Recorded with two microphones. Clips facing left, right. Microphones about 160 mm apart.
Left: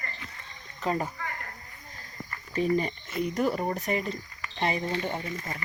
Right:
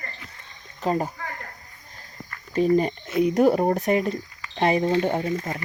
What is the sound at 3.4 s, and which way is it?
Speech, 55° right (ahead or behind).